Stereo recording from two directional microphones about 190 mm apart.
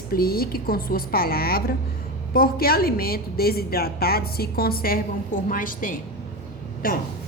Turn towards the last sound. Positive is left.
turn(degrees=50)  # may be behind; listen again after turning